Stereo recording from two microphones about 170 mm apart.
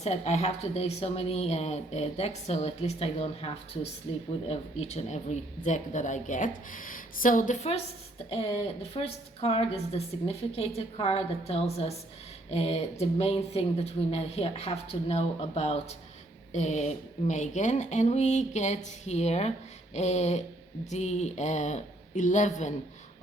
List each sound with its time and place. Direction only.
0.0 s speech: 40° left (ahead or behind)